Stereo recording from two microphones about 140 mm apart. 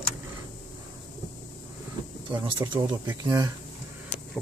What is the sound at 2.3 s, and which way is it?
Speech, 35° right (ahead or behind).